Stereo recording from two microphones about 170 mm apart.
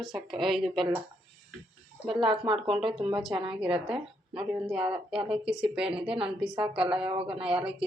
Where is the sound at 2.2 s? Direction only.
30° right (ahead or behind).